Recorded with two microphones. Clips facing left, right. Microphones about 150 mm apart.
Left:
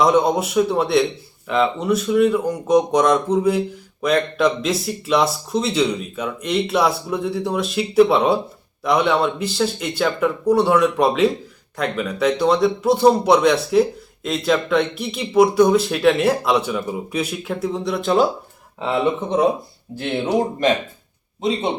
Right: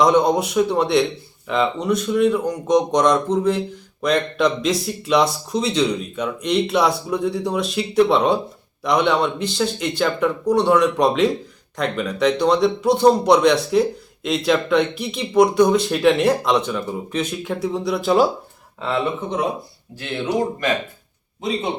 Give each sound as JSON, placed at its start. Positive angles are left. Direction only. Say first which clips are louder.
{"t": 0.0, "sound": "speech", "louder": "even", "side_deg": 5}
{"t": 18.8, "sound": "speech", "louder": "left 3 dB", "side_deg": 15}